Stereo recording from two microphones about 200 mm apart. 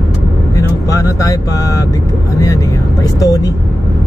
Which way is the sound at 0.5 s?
15° left (ahead or behind).